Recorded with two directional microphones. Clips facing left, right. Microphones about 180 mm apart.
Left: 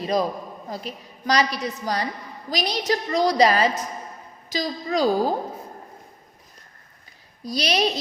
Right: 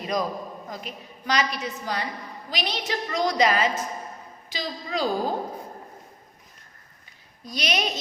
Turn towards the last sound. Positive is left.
turn(degrees=35)  # may be behind; listen again after turning